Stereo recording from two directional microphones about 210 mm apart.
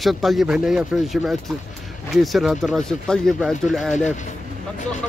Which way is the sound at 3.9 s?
35° left (ahead or behind).